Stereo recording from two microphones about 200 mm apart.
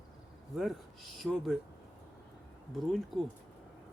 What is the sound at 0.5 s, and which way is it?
Speech, centre (ahead or behind).